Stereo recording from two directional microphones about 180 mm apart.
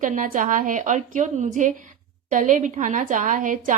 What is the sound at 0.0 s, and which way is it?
A woman's voice, 45° right (ahead or behind).